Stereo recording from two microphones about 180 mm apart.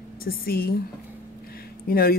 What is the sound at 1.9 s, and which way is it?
Speech, 55° left (ahead or behind).